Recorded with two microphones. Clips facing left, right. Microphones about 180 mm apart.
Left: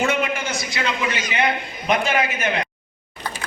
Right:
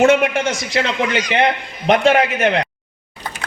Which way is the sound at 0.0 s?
80° right.